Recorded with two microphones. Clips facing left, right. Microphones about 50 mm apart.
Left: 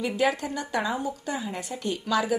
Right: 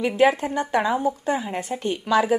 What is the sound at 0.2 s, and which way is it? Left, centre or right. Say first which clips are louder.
A woman's voice: right 8 dB; right.